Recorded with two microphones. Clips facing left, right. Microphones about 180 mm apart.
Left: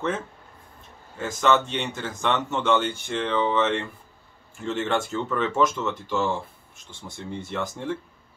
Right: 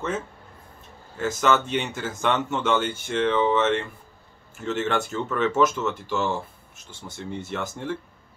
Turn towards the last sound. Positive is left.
turn(degrees=0)  # may be behind; listen again after turning